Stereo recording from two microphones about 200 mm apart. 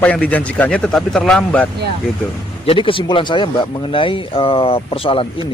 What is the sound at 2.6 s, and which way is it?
Speech, 25° left (ahead or behind).